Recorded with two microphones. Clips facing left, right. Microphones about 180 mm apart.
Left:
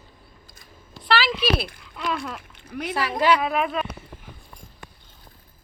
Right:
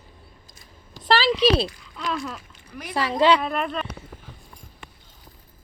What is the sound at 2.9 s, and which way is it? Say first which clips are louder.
Speech: right 2 dB; 25° right (ahead or behind).